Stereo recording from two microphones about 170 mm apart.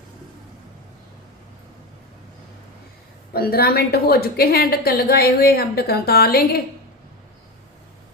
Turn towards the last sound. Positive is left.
turn(degrees=65)  # may be behind; listen again after turning